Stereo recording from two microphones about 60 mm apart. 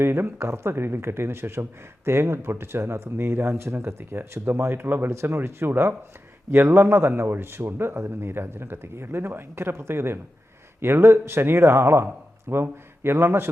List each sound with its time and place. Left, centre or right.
0.0 s speech: right